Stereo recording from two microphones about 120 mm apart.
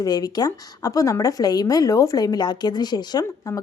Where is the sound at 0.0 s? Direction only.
35° left (ahead or behind).